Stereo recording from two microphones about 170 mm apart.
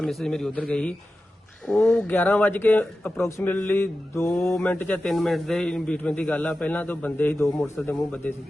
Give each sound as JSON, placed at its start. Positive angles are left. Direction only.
{"t": 0.0, "sound": "a man's voice", "side_deg": 0}